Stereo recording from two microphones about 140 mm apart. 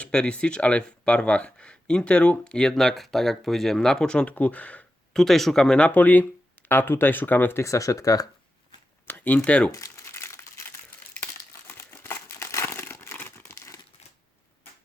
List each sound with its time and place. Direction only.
0.0 s speech: 10° left (ahead or behind); by 8.3 s 25° left (ahead or behind)
9.0 s speech: 15° left (ahead or behind)
9.7 s crumpling: 20° left (ahead or behind)